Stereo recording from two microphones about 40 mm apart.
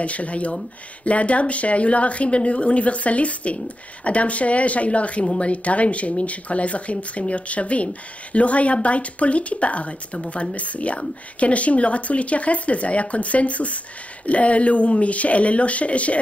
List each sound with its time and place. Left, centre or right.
0.0 s speech: left